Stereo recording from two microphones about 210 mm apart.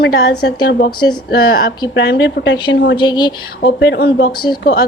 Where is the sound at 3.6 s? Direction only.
55° left (ahead or behind).